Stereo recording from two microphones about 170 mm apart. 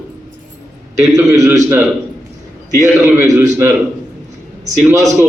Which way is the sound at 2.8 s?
15° right (ahead or behind).